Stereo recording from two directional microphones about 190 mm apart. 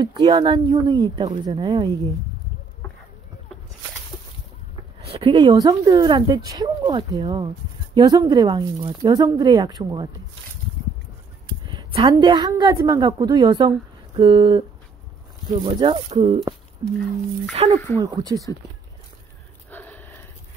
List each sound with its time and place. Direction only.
0.0 s speech: 25° right (ahead or behind)
5.0 s speech: 30° right (ahead or behind)
11.6 s a woman's voice: 25° right (ahead or behind)
15.6 s speech: 25° right (ahead or behind)
17.7 s speech: 10° left (ahead or behind)
18.0 s speech: 20° right (ahead or behind)
19.7 s a sound: 10° left (ahead or behind)